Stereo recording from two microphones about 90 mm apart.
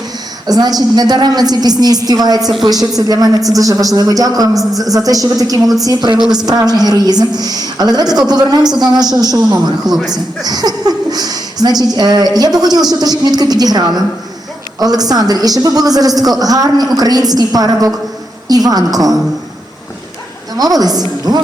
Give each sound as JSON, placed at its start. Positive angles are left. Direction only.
{"t": 0.4, "sound": "speech", "side_deg": -45}
{"t": 2.4, "sound": "speech", "side_deg": 0}
{"t": 2.6, "sound": "a woman's voice", "side_deg": -45}
{"t": 6.1, "sound": "speech", "side_deg": -5}
{"t": 6.4, "sound": "speech", "side_deg": -45}
{"t": 20.6, "sound": "speech", "side_deg": -45}